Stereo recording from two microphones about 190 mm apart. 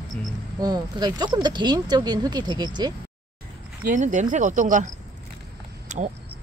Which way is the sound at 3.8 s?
40° right (ahead or behind).